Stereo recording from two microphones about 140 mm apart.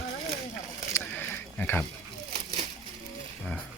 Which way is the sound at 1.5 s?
10° left (ahead or behind).